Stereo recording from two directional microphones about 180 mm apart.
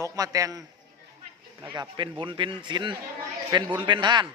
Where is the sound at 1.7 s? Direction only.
25° right (ahead or behind).